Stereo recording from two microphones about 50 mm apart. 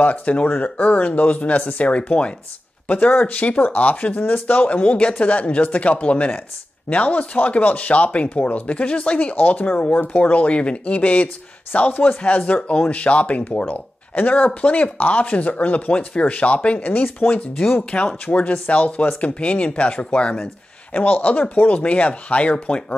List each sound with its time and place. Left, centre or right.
0.0 s speech: left
2.9 s speech: left; by 20.4 s centre
20.9 s speech: left